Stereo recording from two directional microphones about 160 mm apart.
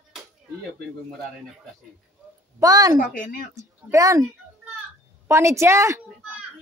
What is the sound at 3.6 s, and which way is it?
Speech, 20° right (ahead or behind).